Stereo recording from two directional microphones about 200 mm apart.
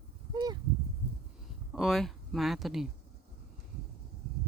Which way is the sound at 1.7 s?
Centre (ahead or behind).